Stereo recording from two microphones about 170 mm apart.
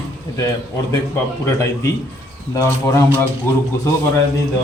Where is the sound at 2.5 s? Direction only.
15° left (ahead or behind).